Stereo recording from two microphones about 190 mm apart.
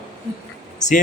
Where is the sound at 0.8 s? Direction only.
40° left (ahead or behind).